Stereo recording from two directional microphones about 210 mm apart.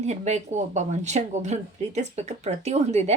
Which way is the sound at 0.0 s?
30° right (ahead or behind).